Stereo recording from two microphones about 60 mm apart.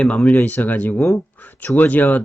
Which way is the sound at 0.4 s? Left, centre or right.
Left.